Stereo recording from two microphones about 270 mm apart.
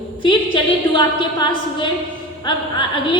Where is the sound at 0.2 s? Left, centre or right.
Centre.